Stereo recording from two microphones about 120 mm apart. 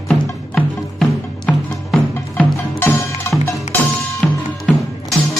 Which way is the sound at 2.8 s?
20° left (ahead or behind).